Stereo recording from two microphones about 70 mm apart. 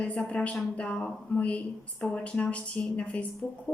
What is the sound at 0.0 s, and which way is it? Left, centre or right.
A woman's voice, centre.